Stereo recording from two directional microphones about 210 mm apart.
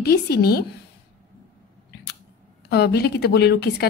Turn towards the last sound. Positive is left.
turn(degrees=50)  # may be behind; listen again after turning